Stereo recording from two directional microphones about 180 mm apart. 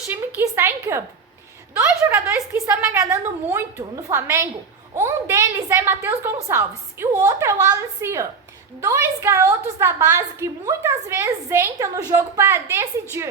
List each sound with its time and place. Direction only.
0.3 s a woman's voice: 15° right (ahead or behind)